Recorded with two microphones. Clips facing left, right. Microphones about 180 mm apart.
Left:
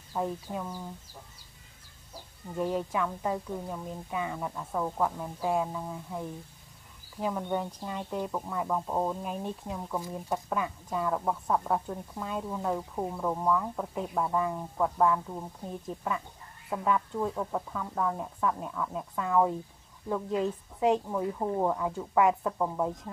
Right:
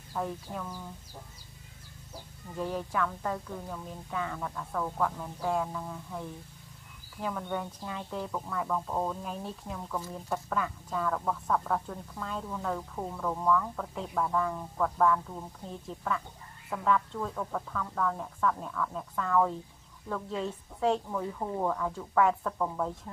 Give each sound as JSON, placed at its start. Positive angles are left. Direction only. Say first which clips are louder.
{"t": 0.1, "sound": "speech", "louder": "left 2 dB", "side_deg": 20}
{"t": 2.5, "sound": "speech", "louder": "left 3 dB", "side_deg": 15}